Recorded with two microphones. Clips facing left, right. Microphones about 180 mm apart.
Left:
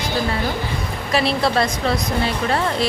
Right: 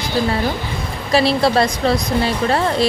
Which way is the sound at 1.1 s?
35° right (ahead or behind).